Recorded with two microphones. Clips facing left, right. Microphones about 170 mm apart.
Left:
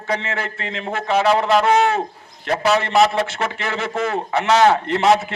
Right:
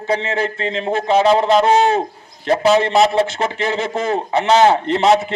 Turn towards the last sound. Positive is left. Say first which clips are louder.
# right 2 dB
turn(degrees=-25)  # may be behind; listen again after turning